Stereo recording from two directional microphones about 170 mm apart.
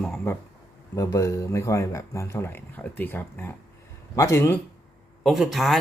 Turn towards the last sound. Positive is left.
turn(degrees=0)  # may be behind; listen again after turning